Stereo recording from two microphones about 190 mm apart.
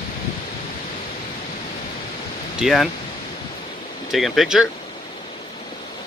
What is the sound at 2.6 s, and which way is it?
Speech, centre (ahead or behind).